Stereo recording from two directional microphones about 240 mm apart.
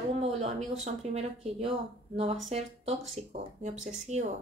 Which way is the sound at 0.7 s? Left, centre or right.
Right.